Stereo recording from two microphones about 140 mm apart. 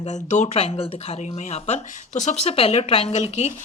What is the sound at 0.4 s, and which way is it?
A woman's voice, 45° left (ahead or behind).